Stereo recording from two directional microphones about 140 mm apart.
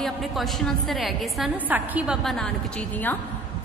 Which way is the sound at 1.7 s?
10° right (ahead or behind).